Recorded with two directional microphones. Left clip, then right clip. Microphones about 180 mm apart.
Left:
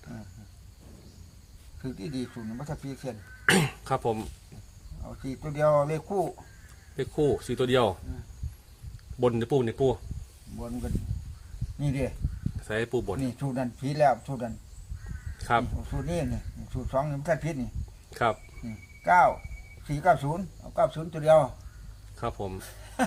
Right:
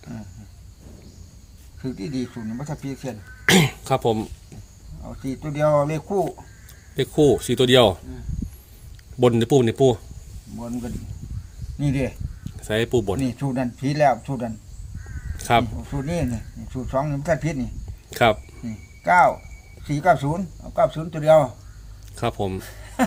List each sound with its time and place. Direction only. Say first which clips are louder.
1.8 s speech: right 7 dB; centre (ahead or behind)
3.5 s speech: right 7 dB; 35° right (ahead or behind)
5.0 s speech: right 7 dB; centre (ahead or behind)
6.9 s speech: right 9 dB; 40° right (ahead or behind)
9.2 s speech: right 8 dB; 45° right (ahead or behind)
10.5 s speech: right 5 dB; centre (ahead or behind)
12.6 s speech: right 8 dB; 35° right (ahead or behind)
13.1 s speech: right 6 dB; centre (ahead or behind)
15.4 s speech: right 7 dB; 40° right (ahead or behind)
15.6 s speech: right 6 dB; centre (ahead or behind)
18.1 s speech: right 9 dB; 50° right (ahead or behind)
18.6 s speech: right 5 dB; centre (ahead or behind)
22.1 s speech: right 8 dB; 50° right (ahead or behind)
22.5 s a sound: right 6 dB; centre (ahead or behind)